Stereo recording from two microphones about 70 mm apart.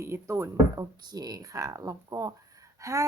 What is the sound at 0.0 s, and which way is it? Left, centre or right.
Speech, right.